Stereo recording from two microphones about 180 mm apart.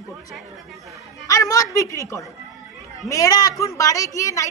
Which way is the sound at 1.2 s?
20° left (ahead or behind).